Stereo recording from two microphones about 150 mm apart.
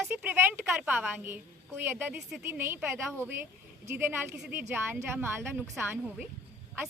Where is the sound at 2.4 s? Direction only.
15° right (ahead or behind).